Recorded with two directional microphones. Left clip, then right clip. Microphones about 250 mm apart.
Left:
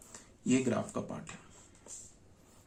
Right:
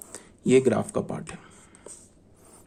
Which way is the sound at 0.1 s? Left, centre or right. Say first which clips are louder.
Right 12 dB; right.